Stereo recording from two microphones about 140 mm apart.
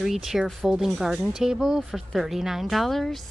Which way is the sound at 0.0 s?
5° right (ahead or behind).